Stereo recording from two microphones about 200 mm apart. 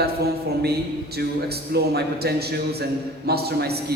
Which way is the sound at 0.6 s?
55° right (ahead or behind).